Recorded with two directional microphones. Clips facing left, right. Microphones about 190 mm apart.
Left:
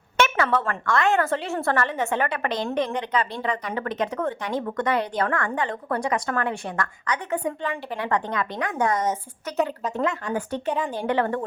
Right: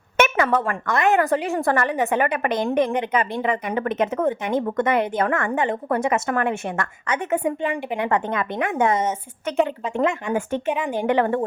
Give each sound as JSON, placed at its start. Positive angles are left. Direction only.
{"t": 0.2, "sound": "a woman's voice", "side_deg": -15}